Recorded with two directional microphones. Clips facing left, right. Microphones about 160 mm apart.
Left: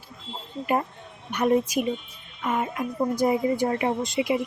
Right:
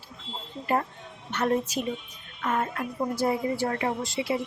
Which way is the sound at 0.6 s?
10° left (ahead or behind).